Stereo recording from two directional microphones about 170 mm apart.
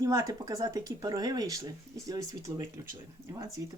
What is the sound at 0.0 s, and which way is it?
Speech, 20° right (ahead or behind).